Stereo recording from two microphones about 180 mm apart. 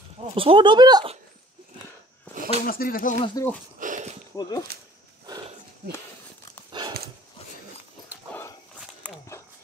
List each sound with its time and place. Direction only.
0.3 s speech: 30° right (ahead or behind)
2.3 s a sound: 10° left (ahead or behind)
2.6 s speech: 55° left (ahead or behind)
3.4 s speech: 20° left (ahead or behind)
3.8 s a sound: 45° right (ahead or behind)
4.4 s speech: 20° left (ahead or behind)
6.8 s dog: 25° right (ahead or behind)
8.3 s walk: 15° left (ahead or behind)